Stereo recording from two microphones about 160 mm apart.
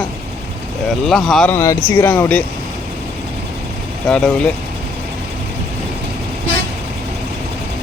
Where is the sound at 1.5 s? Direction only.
20° left (ahead or behind).